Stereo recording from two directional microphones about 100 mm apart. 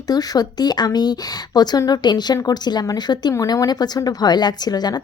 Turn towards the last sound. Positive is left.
turn(degrees=40)  # may be behind; listen again after turning